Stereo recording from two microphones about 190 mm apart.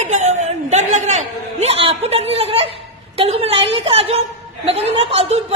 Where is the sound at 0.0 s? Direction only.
40° right (ahead or behind).